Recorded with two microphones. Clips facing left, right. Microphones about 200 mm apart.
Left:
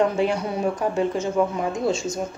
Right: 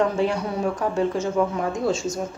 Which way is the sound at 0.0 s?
10° left (ahead or behind).